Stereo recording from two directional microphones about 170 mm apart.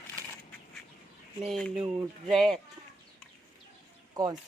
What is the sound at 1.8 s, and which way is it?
Speech, 35° right (ahead or behind).